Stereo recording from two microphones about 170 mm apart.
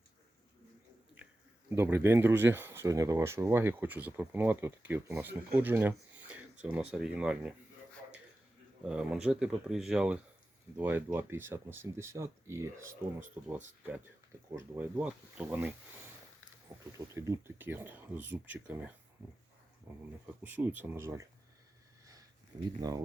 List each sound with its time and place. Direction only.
1.2 s a sound: 10° right (ahead or behind)
1.7 s speech: 15° right (ahead or behind)
8.8 s speech: 5° right (ahead or behind)
16.7 s a sound: 20° right (ahead or behind)
17.2 s speech: 15° right (ahead or behind)
22.5 s speech: 20° right (ahead or behind)